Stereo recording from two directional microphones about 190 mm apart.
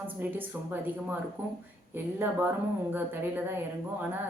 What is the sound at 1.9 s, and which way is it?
A woman's voice, 10° right (ahead or behind).